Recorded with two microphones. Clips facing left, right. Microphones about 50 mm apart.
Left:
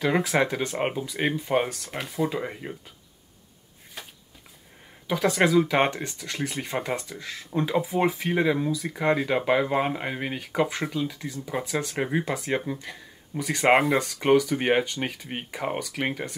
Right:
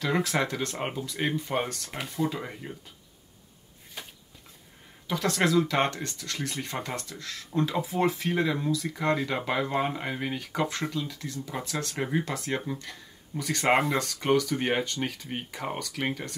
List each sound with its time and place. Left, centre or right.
0.0 s speech: centre
2.2 s speech: centre
5.0 s speech: centre